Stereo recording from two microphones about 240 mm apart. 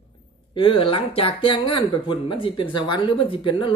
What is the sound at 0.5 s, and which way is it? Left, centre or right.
Speech, left.